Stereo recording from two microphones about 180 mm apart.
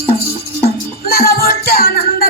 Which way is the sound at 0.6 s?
60° left (ahead or behind).